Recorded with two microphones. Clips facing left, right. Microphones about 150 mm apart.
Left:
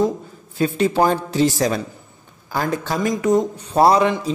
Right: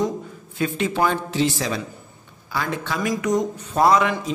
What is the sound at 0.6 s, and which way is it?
A man's voice, 35° left (ahead or behind).